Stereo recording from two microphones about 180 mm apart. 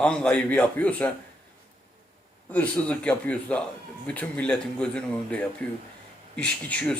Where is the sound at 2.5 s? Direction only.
10° left (ahead or behind).